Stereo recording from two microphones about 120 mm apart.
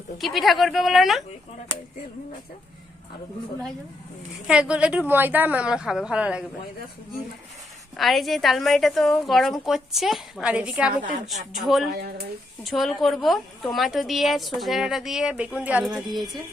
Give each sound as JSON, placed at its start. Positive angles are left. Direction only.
{"t": 0.2, "sound": "a woman's voice", "side_deg": 0}
{"t": 4.4, "sound": "a woman's voice", "side_deg": -10}
{"t": 7.9, "sound": "a woman's voice", "side_deg": 0}
{"t": 11.0, "sound": "a woman's voice", "side_deg": -85}
{"t": 11.5, "sound": "a woman's voice", "side_deg": 0}